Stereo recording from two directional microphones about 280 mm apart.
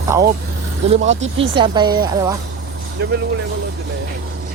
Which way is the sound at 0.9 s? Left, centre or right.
Right.